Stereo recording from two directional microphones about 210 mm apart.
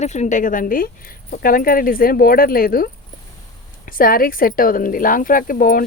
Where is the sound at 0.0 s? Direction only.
35° left (ahead or behind).